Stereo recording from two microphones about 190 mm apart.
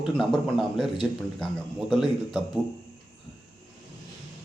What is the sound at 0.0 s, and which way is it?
Speech, centre (ahead or behind).